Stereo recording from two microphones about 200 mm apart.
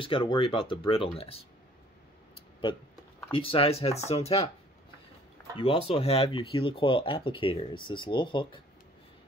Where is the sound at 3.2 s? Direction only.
25° left (ahead or behind).